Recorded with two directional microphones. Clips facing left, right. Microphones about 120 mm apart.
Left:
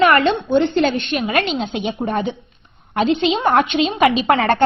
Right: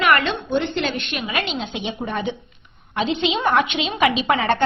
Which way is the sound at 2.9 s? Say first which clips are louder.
Left 5 dB; 55° left (ahead or behind).